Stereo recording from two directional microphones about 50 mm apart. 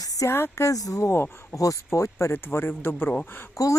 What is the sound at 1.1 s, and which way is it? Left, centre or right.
Speech, left.